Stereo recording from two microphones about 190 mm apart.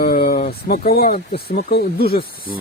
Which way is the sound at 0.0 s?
50° left (ahead or behind).